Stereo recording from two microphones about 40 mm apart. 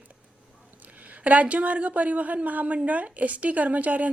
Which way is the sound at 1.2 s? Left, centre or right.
Right.